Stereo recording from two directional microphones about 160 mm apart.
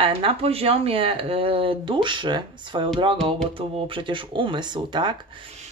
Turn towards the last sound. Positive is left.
turn(degrees=-30)  # may be behind; listen again after turning